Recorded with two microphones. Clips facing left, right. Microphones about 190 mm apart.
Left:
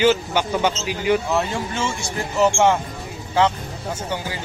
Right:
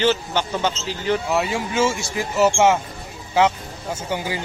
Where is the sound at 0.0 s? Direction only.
10° left (ahead or behind).